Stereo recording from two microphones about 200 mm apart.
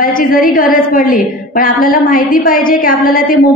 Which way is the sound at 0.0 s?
45° left (ahead or behind).